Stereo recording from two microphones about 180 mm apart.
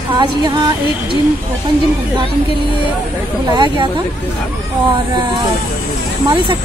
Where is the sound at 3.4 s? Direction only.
25° right (ahead or behind).